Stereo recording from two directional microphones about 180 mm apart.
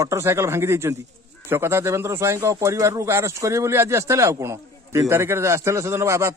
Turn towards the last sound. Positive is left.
turn(degrees=-15)  # may be behind; listen again after turning